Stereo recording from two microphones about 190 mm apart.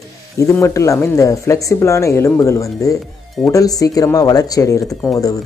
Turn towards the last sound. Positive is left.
turn(degrees=15)  # may be behind; listen again after turning